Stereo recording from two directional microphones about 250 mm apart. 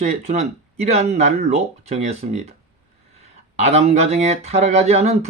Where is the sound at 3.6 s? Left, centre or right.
Right.